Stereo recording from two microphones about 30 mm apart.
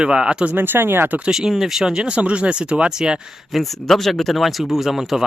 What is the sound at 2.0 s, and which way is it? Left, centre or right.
Speech, right.